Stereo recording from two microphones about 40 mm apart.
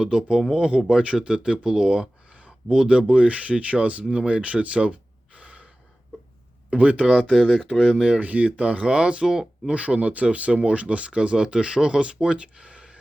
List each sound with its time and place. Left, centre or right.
0.0 s speech: right
5.4 s gasp: right
6.7 s speech: right
7.4 s speech: left
7.9 s speech: right